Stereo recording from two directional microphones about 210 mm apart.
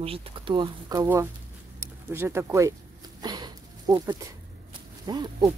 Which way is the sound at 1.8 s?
10° right (ahead or behind).